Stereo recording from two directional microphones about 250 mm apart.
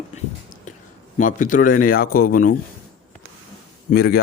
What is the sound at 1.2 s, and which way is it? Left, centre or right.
Speech, left.